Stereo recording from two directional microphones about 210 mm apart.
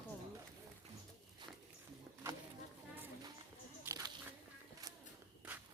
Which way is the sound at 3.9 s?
15° right (ahead or behind).